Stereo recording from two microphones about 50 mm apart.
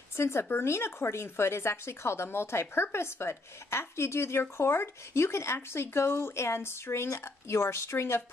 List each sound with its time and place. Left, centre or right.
0.2 s speech: left